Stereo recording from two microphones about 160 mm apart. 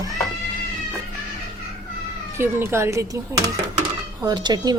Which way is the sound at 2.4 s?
15° right (ahead or behind).